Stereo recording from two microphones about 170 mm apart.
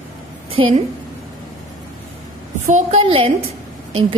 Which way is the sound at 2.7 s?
40° right (ahead or behind).